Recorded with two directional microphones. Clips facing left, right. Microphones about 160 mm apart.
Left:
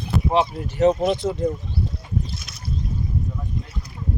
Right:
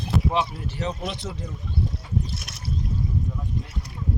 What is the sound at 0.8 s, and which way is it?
Speech, 45° left (ahead or behind).